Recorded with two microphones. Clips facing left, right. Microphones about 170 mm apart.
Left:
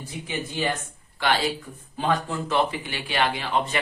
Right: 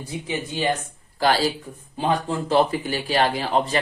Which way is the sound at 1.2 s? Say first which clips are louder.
Right 4 dB; 35° right (ahead or behind).